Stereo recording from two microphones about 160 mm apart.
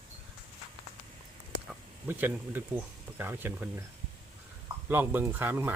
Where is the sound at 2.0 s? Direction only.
10° right (ahead or behind).